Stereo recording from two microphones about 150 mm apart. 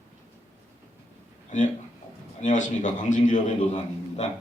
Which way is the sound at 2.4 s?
55° left (ahead or behind).